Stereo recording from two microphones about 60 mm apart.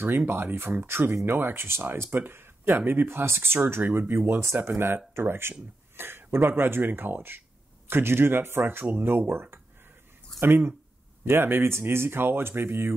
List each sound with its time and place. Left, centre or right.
0.0 s speech: right